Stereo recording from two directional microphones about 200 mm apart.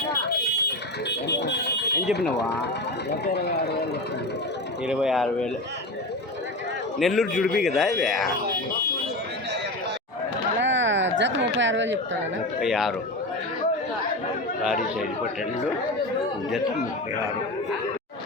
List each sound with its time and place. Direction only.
1.3 s alarm: 55° left (ahead or behind)
3.1 s speech: 55° left (ahead or behind)
4.9 s speech: centre (ahead or behind)
7.0 s speech: centre (ahead or behind)
10.6 s a sound: 65° right (ahead or behind)
12.5 s speech: centre (ahead or behind)